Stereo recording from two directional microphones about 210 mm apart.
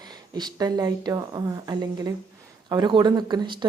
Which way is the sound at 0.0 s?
20° right (ahead or behind).